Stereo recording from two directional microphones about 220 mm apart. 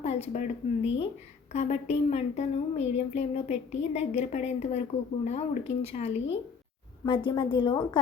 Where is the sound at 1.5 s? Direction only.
30° left (ahead or behind).